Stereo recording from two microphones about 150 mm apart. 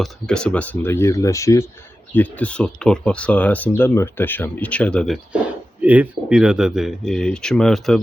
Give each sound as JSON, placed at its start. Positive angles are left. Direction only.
{"t": 0.0, "sound": "speech", "side_deg": 5}
{"t": 2.1, "sound": "speech", "side_deg": 10}